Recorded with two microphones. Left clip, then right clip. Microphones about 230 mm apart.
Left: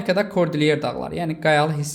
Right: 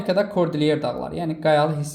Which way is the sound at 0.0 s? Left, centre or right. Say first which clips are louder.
Even; left.